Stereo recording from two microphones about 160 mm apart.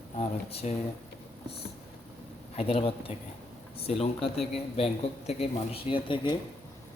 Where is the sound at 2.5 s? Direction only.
35° left (ahead or behind).